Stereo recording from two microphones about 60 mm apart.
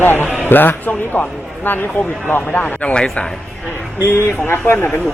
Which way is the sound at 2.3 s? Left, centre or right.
Left.